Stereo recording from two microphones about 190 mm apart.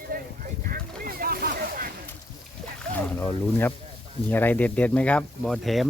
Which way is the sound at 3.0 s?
10° left (ahead or behind).